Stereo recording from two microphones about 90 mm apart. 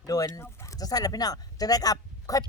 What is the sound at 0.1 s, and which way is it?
Speech, 40° left (ahead or behind).